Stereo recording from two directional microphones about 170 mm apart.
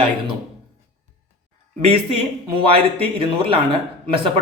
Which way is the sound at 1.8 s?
35° right (ahead or behind).